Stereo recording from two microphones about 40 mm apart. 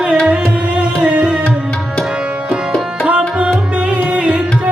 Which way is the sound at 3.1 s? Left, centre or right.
Right.